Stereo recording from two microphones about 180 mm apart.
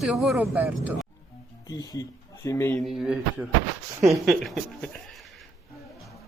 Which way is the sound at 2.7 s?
Centre (ahead or behind).